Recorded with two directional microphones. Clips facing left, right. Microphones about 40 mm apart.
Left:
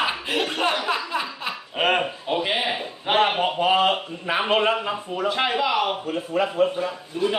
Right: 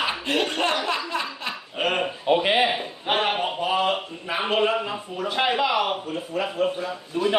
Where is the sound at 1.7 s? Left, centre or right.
Left.